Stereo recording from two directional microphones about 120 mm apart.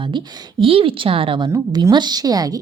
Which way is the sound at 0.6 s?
50° right (ahead or behind).